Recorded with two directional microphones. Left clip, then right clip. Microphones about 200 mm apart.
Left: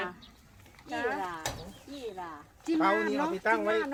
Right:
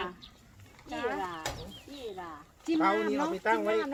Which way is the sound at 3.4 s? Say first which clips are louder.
Even; 40° left (ahead or behind).